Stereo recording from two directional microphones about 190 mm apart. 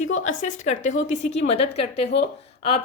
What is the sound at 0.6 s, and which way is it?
A woman's voice, 40° left (ahead or behind).